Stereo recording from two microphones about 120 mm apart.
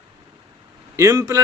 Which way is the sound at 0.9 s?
25° right (ahead or behind).